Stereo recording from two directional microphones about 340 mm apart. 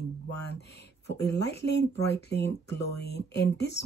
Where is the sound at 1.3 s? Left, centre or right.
Left.